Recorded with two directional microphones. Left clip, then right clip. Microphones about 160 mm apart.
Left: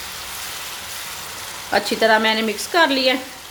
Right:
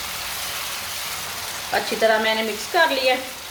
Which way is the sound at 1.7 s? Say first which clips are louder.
Left 3 dB; 75° left (ahead or behind).